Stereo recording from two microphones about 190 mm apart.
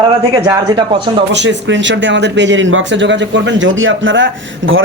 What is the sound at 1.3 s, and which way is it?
Speech, 70° right (ahead or behind).